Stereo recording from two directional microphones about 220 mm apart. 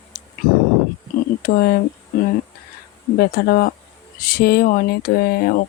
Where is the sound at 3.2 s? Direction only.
45° left (ahead or behind).